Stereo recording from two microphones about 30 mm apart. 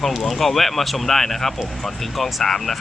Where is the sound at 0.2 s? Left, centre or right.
Centre.